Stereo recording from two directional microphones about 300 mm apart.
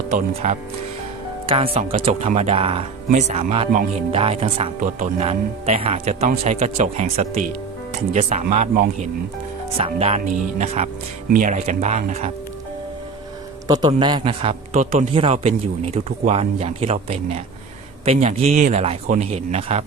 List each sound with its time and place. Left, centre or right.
0.4 s speech: right
13.7 s a man's voice: centre